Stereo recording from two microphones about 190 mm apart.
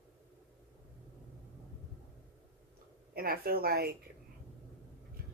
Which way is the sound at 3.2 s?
50° right (ahead or behind).